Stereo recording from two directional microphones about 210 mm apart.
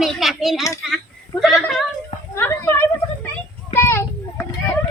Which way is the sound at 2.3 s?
10° left (ahead or behind).